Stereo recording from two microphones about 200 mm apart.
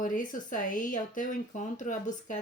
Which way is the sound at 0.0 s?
40° left (ahead or behind).